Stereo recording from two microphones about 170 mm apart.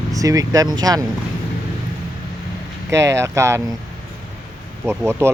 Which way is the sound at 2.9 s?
15° right (ahead or behind).